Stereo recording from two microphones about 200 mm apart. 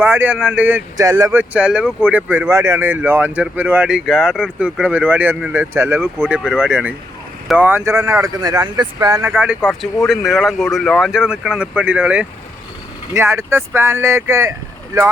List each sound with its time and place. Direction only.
0.0 s speech: 10° right (ahead or behind)
9.6 s speech: 5° left (ahead or behind); by 15.1 s 15° right (ahead or behind)